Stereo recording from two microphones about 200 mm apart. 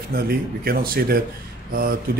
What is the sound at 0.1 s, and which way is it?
Speech, 50° right (ahead or behind).